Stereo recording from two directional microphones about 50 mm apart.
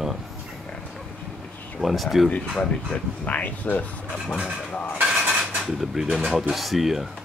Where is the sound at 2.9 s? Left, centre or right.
Centre.